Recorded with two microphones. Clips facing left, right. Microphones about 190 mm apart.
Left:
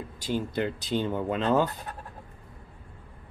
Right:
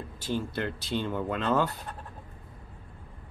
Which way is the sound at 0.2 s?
15° left (ahead or behind).